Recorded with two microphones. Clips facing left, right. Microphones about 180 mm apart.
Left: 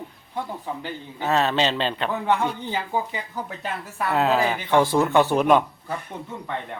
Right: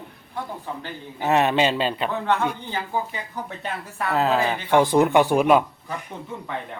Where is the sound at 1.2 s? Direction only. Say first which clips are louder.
Right 2 dB; 15° right (ahead or behind).